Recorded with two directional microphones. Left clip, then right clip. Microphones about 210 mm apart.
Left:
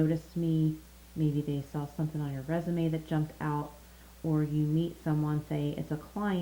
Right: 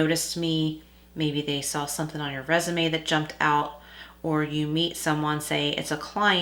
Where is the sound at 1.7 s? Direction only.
20° right (ahead or behind).